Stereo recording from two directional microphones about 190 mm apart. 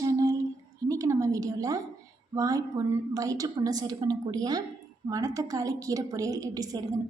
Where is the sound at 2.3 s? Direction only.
15° right (ahead or behind).